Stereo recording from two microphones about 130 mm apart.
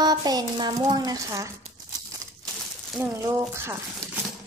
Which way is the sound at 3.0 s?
20° right (ahead or behind).